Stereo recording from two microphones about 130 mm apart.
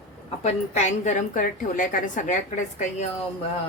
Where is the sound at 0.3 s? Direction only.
60° left (ahead or behind).